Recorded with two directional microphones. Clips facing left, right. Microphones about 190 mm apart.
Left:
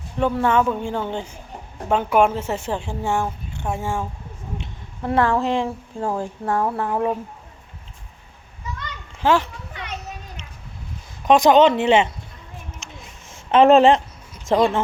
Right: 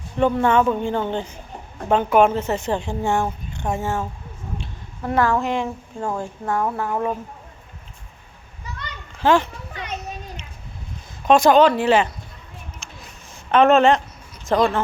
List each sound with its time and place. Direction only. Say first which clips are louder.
0.3 s a woman's voice: left 1 dB; 5° left (ahead or behind)
4.5 s a woman's voice: left 1 dB; 25° left (ahead or behind)
9.2 s speech: right 1 dB; 5° left (ahead or behind)
11.3 s speech: even; 15° left (ahead or behind)
12.8 s a sound: left 1 dB; 25° left (ahead or behind)
14.4 s speech: left 1 dB; 25° left (ahead or behind)